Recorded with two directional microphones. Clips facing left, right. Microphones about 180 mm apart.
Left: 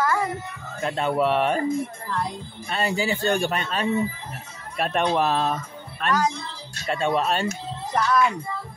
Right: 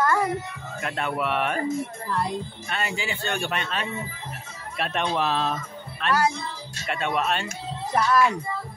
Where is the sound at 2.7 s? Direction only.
35° left (ahead or behind).